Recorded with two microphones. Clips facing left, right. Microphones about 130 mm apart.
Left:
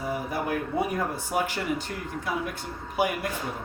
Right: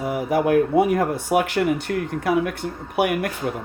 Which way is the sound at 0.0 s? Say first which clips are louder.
Right 9 dB; 85° right.